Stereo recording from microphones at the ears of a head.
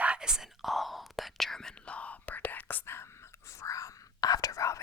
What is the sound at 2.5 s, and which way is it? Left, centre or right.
Whispering, left.